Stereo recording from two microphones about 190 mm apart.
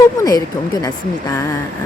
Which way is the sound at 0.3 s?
20° left (ahead or behind).